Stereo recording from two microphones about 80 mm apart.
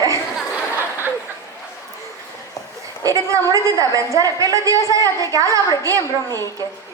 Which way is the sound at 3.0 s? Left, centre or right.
Right.